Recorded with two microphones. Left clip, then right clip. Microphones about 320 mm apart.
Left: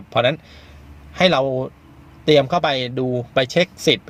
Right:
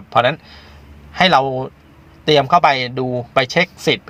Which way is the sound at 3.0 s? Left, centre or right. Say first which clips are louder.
Right 1 dB; right.